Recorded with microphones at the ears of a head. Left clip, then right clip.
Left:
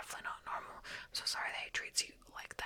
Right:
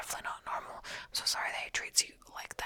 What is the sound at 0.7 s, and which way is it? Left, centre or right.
Whispering, right.